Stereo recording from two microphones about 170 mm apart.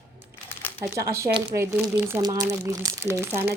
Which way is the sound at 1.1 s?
15° right (ahead or behind).